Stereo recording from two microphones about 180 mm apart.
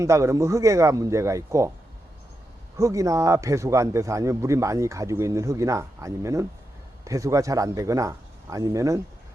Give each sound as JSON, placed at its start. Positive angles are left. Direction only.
{"t": 0.0, "sound": "a man's voice", "side_deg": -15}
{"t": 2.7, "sound": "a man's voice", "side_deg": -20}